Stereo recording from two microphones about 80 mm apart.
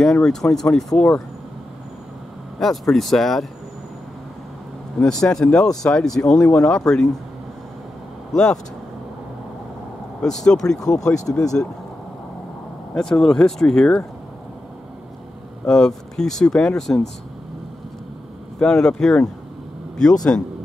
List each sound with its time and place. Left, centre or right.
0.0 s speech: centre
2.6 s speech: centre
5.0 s speech: centre
8.3 s speech: centre
10.2 s speech: centre
11.3 s speech: left
12.9 s speech: centre
15.6 s speech: centre
18.6 s speech: centre
20.3 s speech: centre